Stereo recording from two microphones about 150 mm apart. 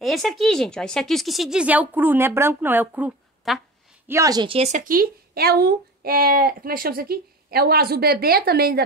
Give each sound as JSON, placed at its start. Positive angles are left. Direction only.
{"t": 0.0, "sound": "a woman's voice", "side_deg": 0}
{"t": 3.4, "sound": "a woman's voice", "side_deg": 0}
{"t": 4.1, "sound": "speech", "side_deg": -25}
{"t": 4.6, "sound": "speech", "side_deg": -45}
{"t": 4.8, "sound": "speech", "side_deg": -70}